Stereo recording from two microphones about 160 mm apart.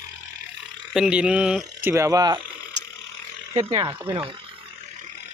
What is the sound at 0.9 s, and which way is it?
Speech, 5° right (ahead or behind).